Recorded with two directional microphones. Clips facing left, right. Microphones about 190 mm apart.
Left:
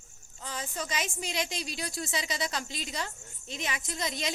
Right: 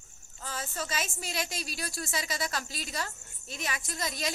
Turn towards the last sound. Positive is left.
turn(degrees=20)  # may be behind; listen again after turning